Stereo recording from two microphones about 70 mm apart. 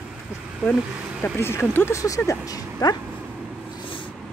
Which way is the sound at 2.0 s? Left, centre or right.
Left.